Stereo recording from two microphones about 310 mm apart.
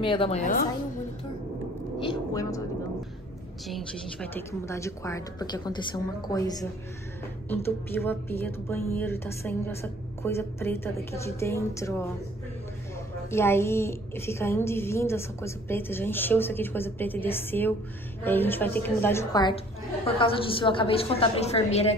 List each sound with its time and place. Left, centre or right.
0.0 s a woman's voice: centre
2.0 s a sound: centre
3.6 s speech: centre
13.3 s speech: centre